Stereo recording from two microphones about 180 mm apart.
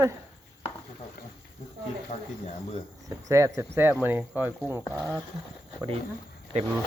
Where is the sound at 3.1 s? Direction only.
20° right (ahead or behind).